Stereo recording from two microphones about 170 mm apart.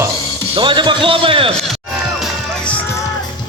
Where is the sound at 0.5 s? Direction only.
30° right (ahead or behind).